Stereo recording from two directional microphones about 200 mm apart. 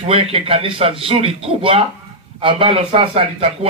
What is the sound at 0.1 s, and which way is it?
A man's voice, 30° right (ahead or behind).